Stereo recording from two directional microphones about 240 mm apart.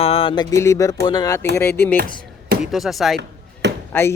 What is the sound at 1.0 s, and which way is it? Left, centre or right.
Speech, centre.